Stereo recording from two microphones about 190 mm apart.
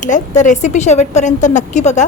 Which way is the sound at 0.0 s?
40° left (ahead or behind).